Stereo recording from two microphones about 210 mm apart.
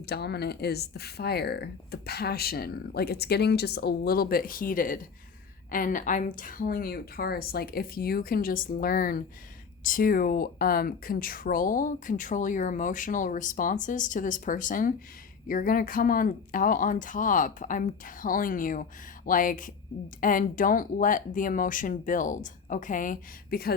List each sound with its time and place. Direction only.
0.0 s speech: 50° left (ahead or behind)